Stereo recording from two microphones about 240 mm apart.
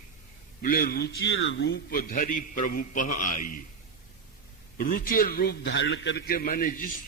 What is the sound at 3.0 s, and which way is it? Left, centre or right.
Speech, left.